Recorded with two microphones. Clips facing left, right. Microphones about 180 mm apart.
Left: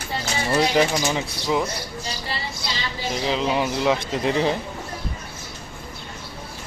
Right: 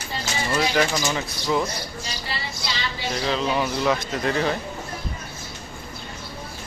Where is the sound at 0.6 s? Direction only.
20° left (ahead or behind).